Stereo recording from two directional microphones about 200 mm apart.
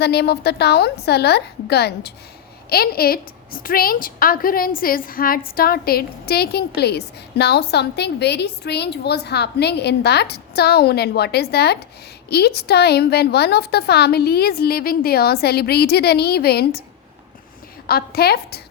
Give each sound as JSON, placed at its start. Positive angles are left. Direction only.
{"t": 0.0, "sound": "a woman's voice", "side_deg": 55}
{"t": 17.8, "sound": "a woman's voice", "side_deg": 50}